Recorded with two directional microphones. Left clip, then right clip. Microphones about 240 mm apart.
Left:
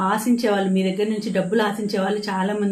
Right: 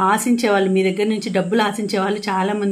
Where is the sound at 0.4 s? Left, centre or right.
Right.